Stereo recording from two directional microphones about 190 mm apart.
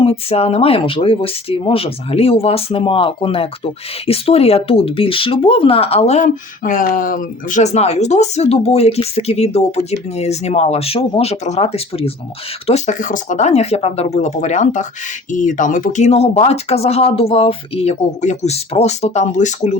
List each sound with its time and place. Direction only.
0.0 s speech: 30° left (ahead or behind)